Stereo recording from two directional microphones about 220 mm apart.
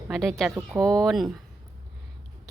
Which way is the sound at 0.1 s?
Centre (ahead or behind).